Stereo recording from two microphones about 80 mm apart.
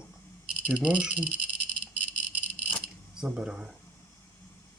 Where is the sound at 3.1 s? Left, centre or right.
Centre.